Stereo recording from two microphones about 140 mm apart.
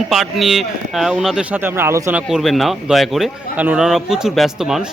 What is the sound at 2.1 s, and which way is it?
A man's voice, 5° right (ahead or behind).